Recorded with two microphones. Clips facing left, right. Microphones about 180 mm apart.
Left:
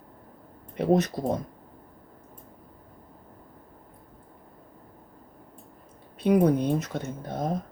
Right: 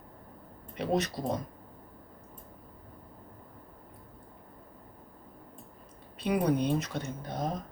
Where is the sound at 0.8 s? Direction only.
50° left (ahead or behind).